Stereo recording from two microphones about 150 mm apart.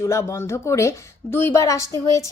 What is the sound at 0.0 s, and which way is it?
A woman's voice, 20° left (ahead or behind).